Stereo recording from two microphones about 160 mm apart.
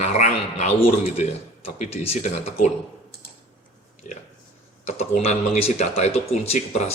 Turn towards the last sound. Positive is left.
turn(degrees=45)  # may be behind; listen again after turning